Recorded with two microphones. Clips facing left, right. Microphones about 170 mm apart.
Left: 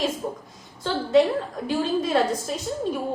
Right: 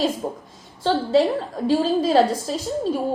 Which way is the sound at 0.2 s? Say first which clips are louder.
Right 2 dB; 35° right (ahead or behind).